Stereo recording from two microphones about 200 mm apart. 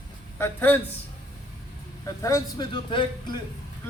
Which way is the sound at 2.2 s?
15° left (ahead or behind).